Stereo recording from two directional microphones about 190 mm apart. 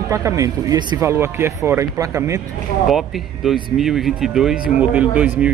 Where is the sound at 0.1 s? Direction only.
15° right (ahead or behind).